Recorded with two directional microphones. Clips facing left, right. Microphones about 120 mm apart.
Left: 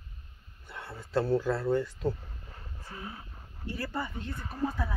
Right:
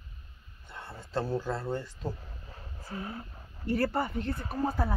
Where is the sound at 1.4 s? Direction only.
25° right (ahead or behind).